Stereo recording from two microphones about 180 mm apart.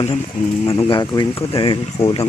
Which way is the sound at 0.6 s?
35° left (ahead or behind).